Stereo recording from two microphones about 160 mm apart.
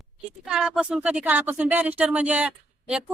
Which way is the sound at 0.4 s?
5° right (ahead or behind).